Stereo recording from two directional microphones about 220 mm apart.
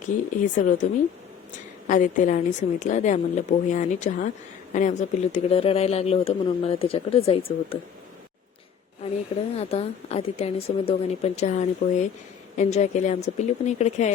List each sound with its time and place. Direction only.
0.0 s a woman's voice: 35° left (ahead or behind)
1.9 s a woman's voice: 35° left (ahead or behind)
9.6 s a woman's voice: 25° left (ahead or behind)